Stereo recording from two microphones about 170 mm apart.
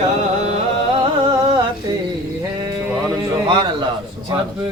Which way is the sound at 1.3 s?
20° right (ahead or behind).